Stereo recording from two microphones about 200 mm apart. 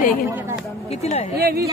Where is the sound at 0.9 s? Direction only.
30° left (ahead or behind).